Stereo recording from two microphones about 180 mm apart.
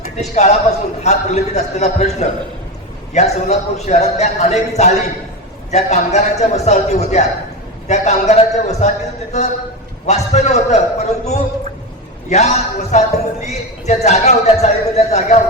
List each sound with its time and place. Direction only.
0.2 s a man's voice: 40° left (ahead or behind)
10.1 s a man's voice: 40° left (ahead or behind)